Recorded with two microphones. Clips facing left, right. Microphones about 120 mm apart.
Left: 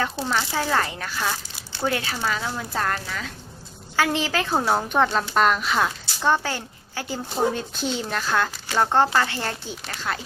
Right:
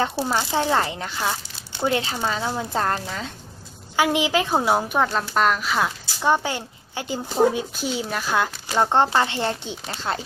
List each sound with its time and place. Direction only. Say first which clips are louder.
0.2 s speech: right 2 dB; 10° right (ahead or behind)
0.5 s speech: right 2 dB; 20° right (ahead or behind)
3.9 s speech: right 3 dB; 15° right (ahead or behind)
6.2 s speech: right 1 dB; 15° right (ahead or behind)
7.7 s speech: even; 5° right (ahead or behind); by 10.2 s 25° right (ahead or behind)